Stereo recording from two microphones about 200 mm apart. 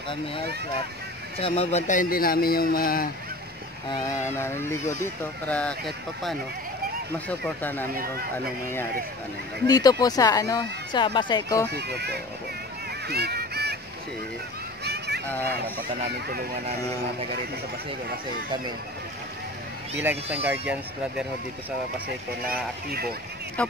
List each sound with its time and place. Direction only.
1.4 s speech: 30° left (ahead or behind); by 3.1 s 45° left (ahead or behind)
3.9 s speech: 15° left (ahead or behind)
9.7 s speech: 20° left (ahead or behind)
11.7 s speech: 55° right (ahead or behind)
13.1 s a sound: 55° right (ahead or behind)
14.9 s a sound: 55° right (ahead or behind)
20.0 s speech: 10° right (ahead or behind)
22.4 s speech: 50° right (ahead or behind)
23.6 s speech: 5° left (ahead or behind)